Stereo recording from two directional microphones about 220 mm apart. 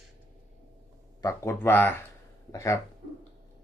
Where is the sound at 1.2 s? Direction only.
15° left (ahead or behind).